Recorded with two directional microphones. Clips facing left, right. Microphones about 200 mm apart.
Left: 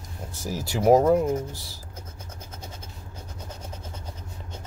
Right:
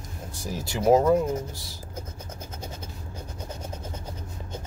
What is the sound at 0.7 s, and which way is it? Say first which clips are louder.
Speech: left 1 dB; 15° left (ahead or behind).